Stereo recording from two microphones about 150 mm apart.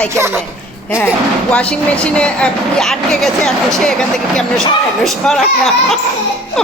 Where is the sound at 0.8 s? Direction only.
10° left (ahead or behind).